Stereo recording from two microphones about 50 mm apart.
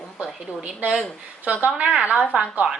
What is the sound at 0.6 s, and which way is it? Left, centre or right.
Speech, centre.